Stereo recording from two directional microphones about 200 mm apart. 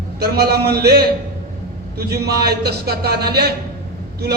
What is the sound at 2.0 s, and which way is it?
A man's voice, 50° right (ahead or behind).